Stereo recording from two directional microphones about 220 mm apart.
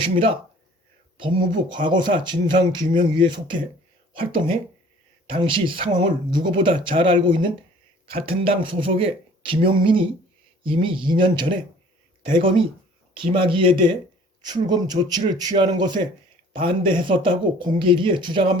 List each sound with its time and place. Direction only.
0.0 s speech: 25° right (ahead or behind)
13.1 s speech: 25° right (ahead or behind)